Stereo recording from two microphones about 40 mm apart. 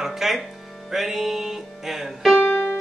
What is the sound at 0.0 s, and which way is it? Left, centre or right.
Music, centre.